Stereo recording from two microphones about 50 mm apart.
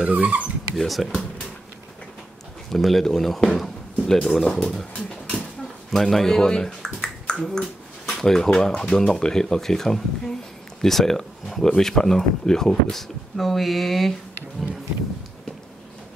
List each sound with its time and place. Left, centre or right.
0.0 s speech: right
0.7 s speech: centre
2.7 s speech: centre
3.5 s a sound: centre
4.3 s speech: centre
4.7 s dog: centre
5.9 s speech: centre